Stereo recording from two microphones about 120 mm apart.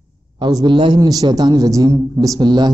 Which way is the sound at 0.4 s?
35° right (ahead or behind).